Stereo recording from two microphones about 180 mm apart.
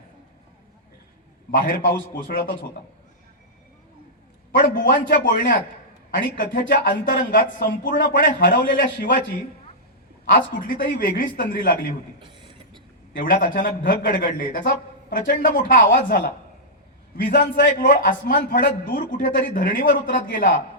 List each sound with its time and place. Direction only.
1.5 s a man's voice: 50° left (ahead or behind)
4.5 s a man's voice: 50° left (ahead or behind)
10.3 s a man's voice: 50° left (ahead or behind)
12.3 s a sound: 25° right (ahead or behind)
13.1 s a man's voice: 50° left (ahead or behind)
17.3 s a man's voice: 50° left (ahead or behind)